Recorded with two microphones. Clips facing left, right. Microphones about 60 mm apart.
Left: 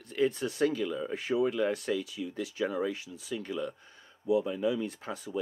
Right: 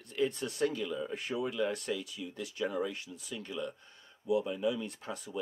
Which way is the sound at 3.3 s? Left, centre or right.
Left.